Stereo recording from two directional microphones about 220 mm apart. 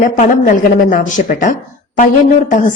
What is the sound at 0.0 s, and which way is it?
Speech, 40° left (ahead or behind).